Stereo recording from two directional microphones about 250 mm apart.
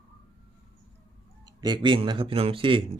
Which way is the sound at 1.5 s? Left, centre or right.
Centre.